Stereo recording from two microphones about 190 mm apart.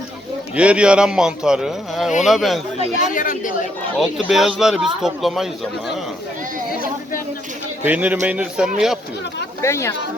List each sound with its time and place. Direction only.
0.5 s speech: 5° right (ahead or behind)
3.0 s speech: 45° left (ahead or behind)
4.0 s speech: centre (ahead or behind)
7.9 s a man's voice: 10° right (ahead or behind)
9.6 s speech: 15° left (ahead or behind)